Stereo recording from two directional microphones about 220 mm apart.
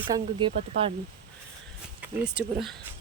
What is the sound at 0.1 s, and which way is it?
Speech, 20° right (ahead or behind).